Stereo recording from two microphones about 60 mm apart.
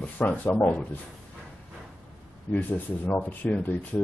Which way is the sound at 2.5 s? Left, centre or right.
Left.